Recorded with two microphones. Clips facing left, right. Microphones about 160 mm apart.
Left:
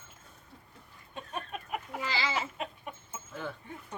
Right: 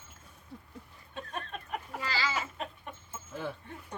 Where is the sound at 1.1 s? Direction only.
10° left (ahead or behind).